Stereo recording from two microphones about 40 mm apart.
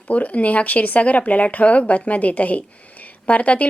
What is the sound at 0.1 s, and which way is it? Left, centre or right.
A woman's voice, left.